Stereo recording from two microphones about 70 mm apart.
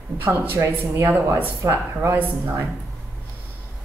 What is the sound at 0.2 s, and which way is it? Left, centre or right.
Speech, right.